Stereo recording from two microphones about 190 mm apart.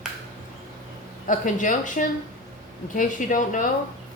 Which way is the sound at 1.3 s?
45° left (ahead or behind).